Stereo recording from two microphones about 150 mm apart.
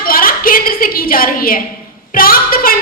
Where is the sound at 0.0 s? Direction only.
75° left (ahead or behind).